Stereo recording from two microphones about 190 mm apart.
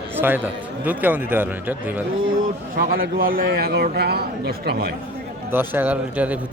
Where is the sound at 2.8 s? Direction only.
50° right (ahead or behind).